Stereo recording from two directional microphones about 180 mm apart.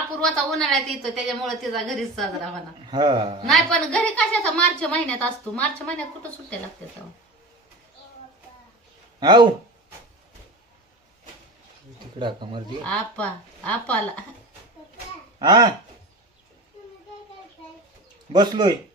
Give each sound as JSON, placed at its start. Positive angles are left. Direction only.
{"t": 0.2, "sound": "a woman's voice", "side_deg": 0}
{"t": 2.9, "sound": "a man's voice", "side_deg": -25}
{"t": 3.4, "sound": "a woman's voice", "side_deg": 5}
{"t": 9.2, "sound": "a man's voice", "side_deg": -25}
{"t": 12.2, "sound": "a man's voice", "side_deg": -25}
{"t": 12.8, "sound": "speech", "side_deg": 5}
{"t": 15.3, "sound": "speech", "side_deg": -25}
{"t": 18.3, "sound": "a man's voice", "side_deg": -25}